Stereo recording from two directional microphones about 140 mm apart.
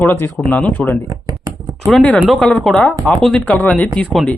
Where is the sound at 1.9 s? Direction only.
5° left (ahead or behind).